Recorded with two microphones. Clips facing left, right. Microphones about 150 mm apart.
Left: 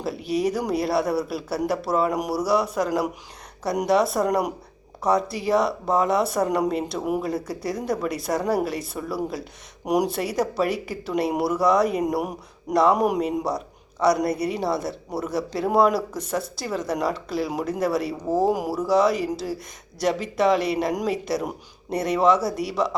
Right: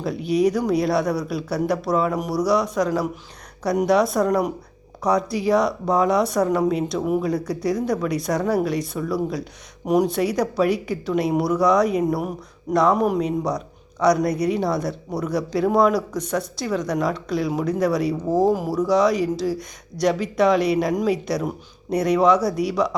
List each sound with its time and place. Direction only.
0.0 s speech: centre (ahead or behind)